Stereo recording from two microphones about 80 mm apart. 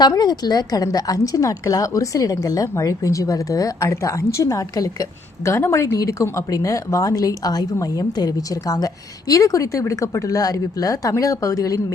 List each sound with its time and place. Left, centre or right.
0.2 s a woman's voice: left
5.5 s a woman's voice: left